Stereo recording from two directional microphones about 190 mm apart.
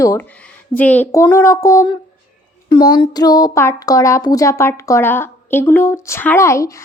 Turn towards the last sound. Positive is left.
turn(degrees=15)  # may be behind; listen again after turning